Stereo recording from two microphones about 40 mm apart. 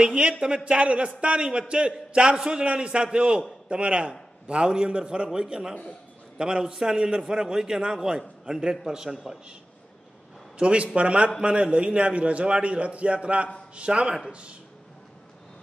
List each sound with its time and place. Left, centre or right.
0.0 s a man's voice: right
10.6 s a man's voice: right